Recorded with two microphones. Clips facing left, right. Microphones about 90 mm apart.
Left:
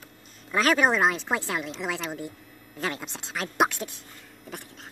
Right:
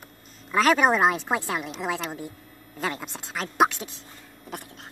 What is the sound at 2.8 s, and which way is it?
A woman's voice, 5° right (ahead or behind).